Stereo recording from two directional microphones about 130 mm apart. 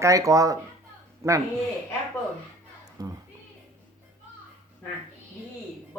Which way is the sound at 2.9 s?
30° right (ahead or behind).